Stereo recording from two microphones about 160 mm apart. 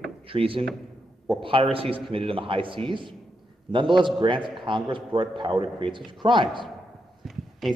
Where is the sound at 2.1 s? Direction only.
35° right (ahead or behind).